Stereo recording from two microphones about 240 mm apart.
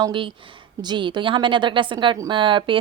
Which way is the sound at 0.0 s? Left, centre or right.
Right.